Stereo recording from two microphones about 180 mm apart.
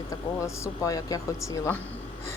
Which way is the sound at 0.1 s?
15° left (ahead or behind).